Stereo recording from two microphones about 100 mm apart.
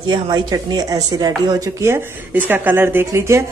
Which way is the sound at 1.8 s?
25° right (ahead or behind).